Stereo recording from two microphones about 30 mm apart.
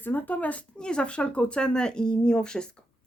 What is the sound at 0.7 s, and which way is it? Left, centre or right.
Speech, left.